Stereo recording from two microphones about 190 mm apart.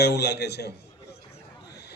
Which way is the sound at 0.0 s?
60° left (ahead or behind).